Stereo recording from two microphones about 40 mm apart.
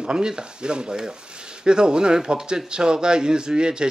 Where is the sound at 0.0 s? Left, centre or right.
Centre.